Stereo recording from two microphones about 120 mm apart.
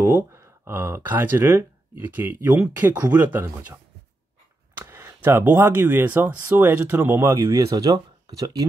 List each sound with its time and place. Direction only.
0.0 s speech: 20° right (ahead or behind)